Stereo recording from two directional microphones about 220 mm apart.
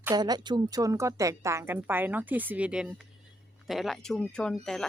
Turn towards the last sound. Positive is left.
turn(degrees=0)  # may be behind; listen again after turning